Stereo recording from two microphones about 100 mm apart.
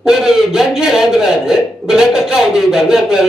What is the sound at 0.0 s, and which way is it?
A man's voice, 5° right (ahead or behind).